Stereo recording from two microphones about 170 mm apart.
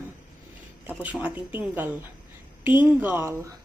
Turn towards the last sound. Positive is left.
turn(degrees=-15)  # may be behind; listen again after turning